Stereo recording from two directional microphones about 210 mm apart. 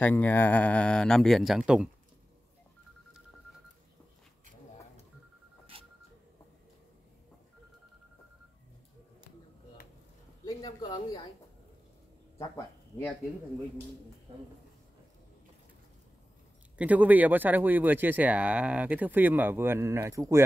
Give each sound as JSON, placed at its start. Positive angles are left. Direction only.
{"t": 0.0, "sound": "speech", "side_deg": 10}
{"t": 10.4, "sound": "a sound", "side_deg": 20}
{"t": 16.7, "sound": "speech", "side_deg": -5}